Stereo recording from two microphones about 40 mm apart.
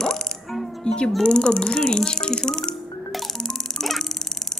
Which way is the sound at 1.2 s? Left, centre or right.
Left.